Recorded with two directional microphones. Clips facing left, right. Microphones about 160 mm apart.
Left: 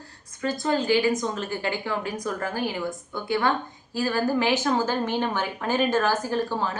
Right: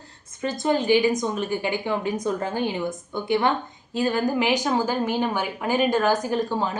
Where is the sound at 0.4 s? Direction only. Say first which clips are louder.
Right 2 dB; 20° right (ahead or behind).